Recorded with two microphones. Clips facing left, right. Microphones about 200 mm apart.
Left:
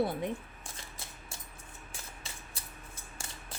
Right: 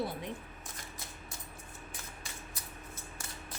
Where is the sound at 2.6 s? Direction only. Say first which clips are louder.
Right 1 dB; 30° left (ahead or behind).